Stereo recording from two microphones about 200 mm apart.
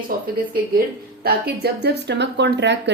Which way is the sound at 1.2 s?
55° right (ahead or behind).